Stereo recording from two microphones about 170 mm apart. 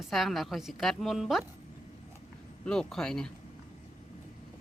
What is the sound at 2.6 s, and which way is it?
Speech, 5° left (ahead or behind).